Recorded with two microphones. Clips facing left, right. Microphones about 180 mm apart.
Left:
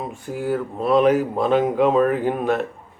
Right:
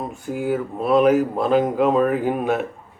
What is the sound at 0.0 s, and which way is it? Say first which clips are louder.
Speech: right 1 dB; centre (ahead or behind).